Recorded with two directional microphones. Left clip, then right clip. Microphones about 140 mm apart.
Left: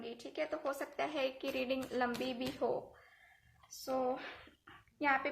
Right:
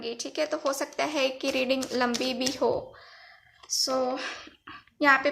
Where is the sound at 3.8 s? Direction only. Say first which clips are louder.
Right 8 dB; 40° right (ahead or behind).